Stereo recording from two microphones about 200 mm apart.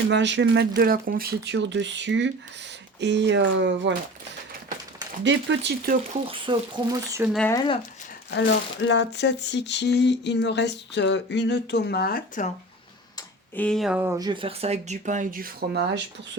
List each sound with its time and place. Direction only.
0.1 s speech: 65° right (ahead or behind)
0.8 s speech: 45° right (ahead or behind); by 3.9 s 65° right (ahead or behind)
5.2 s speech: 65° right (ahead or behind)
6.2 s speech: 25° right (ahead or behind)
8.3 s speech: 60° left (ahead or behind); by 12.5 s 45° left (ahead or behind)
13.6 s speech: 5° left (ahead or behind)
14.0 s speech: 15° right (ahead or behind); by 16.0 s 50° right (ahead or behind)